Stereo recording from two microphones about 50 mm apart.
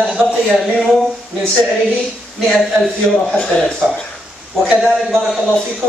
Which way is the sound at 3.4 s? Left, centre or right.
Centre.